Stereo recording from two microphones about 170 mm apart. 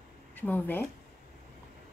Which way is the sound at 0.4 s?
10° left (ahead or behind).